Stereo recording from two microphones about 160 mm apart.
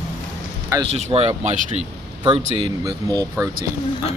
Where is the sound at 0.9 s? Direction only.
40° right (ahead or behind).